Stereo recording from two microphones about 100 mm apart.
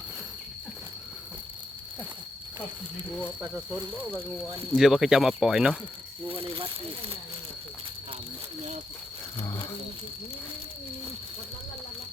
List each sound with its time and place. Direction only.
4.7 s speech: 5° right (ahead or behind)
6.2 s speech: 60° right (ahead or behind)